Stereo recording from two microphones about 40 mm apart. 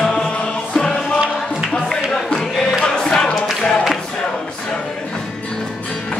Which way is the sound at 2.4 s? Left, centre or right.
Centre.